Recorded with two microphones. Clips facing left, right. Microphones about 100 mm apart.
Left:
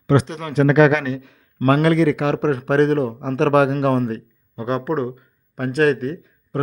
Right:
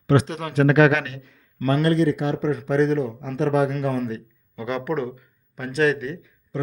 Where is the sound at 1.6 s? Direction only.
90° left.